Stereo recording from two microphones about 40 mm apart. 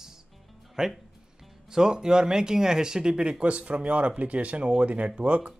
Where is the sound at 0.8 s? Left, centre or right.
Centre.